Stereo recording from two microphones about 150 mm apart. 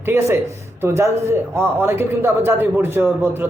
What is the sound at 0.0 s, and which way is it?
A man's voice, 15° right (ahead or behind).